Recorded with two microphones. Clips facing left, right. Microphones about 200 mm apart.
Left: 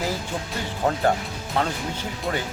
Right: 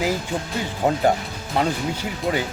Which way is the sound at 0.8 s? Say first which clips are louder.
Right 2 dB; 15° right (ahead or behind).